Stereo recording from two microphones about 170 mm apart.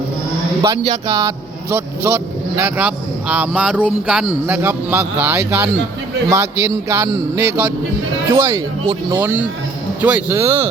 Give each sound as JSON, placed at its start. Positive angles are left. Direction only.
{"t": 0.6, "sound": "speech", "side_deg": -20}